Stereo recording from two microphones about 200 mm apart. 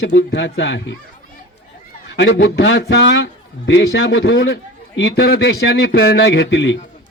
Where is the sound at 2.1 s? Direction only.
65° left (ahead or behind).